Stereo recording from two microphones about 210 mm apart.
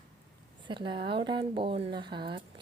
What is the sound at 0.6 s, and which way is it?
A woman's voice, 20° right (ahead or behind).